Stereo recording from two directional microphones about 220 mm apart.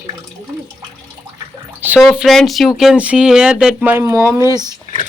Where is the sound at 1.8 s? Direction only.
5° right (ahead or behind).